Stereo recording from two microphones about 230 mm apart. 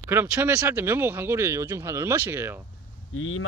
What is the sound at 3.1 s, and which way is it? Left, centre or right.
Speech, left.